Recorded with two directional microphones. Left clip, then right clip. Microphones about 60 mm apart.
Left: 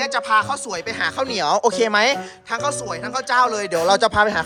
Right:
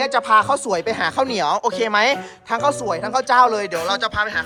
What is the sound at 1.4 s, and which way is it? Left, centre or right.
Speech, left.